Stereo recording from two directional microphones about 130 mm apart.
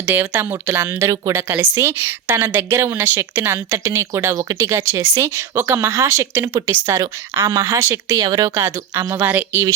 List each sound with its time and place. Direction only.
0.0 s a woman's voice: 15° right (ahead or behind)